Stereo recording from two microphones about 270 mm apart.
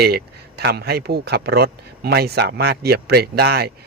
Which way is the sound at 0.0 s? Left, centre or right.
Right.